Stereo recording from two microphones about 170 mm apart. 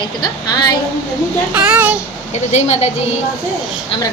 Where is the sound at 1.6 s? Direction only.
5° right (ahead or behind).